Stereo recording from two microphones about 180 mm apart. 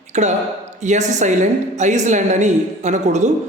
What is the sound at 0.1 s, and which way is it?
Speech, 40° right (ahead or behind).